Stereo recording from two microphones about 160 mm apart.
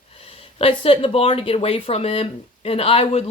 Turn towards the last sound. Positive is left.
turn(degrees=35)  # may be behind; listen again after turning